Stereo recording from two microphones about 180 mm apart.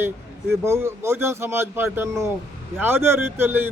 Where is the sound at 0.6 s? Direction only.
15° right (ahead or behind).